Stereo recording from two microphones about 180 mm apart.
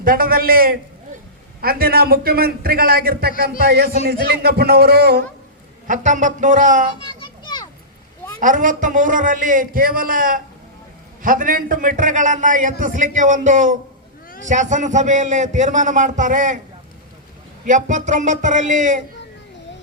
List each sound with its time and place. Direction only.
0.0 s a man's voice: 50° right (ahead or behind)
5.9 s a man's voice: 45° right (ahead or behind)
7.2 s children playing: 25° left (ahead or behind)
8.4 s a man's voice: 45° right (ahead or behind)
17.7 s a man's voice: 45° right (ahead or behind)